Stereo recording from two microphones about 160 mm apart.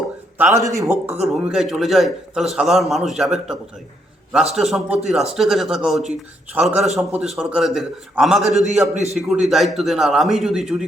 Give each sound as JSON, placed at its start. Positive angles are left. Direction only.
{"t": 0.3, "sound": "speech", "side_deg": -15}
{"t": 1.2, "sound": "a man's voice", "side_deg": 0}
{"t": 4.5, "sound": "a man's voice", "side_deg": 0}
{"t": 8.5, "sound": "a man's voice", "side_deg": -45}
{"t": 9.1, "sound": "a man's voice", "side_deg": 0}